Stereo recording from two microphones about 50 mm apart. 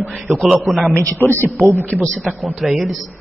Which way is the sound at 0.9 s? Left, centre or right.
Left.